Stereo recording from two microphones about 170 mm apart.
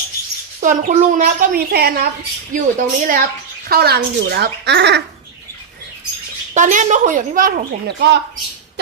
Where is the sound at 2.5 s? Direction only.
50° right (ahead or behind).